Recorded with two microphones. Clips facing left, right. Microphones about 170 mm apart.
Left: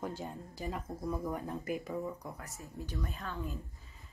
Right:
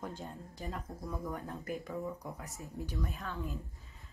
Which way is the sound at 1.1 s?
15° left (ahead or behind).